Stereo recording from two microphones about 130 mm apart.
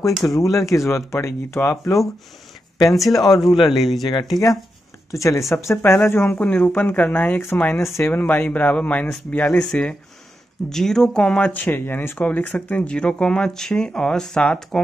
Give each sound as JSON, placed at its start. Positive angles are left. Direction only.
{"t": 0.2, "sound": "speech", "side_deg": 25}
{"t": 2.9, "sound": "speech", "side_deg": 0}
{"t": 5.1, "sound": "speech", "side_deg": 25}